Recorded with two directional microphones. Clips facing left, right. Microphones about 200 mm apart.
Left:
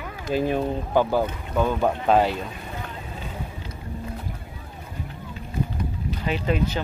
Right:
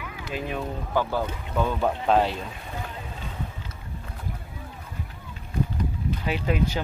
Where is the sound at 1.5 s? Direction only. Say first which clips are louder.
Left 3 dB; 5° left (ahead or behind).